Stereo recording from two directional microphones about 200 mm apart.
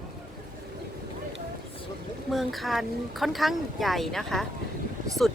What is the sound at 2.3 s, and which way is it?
Speech, centre (ahead or behind).